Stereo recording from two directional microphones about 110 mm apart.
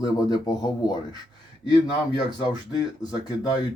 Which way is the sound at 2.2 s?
40° left (ahead or behind).